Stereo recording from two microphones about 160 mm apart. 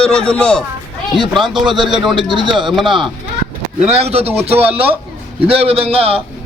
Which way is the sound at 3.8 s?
40° right (ahead or behind).